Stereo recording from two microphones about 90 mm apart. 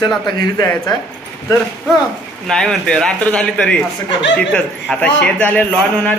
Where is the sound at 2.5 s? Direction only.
5° left (ahead or behind).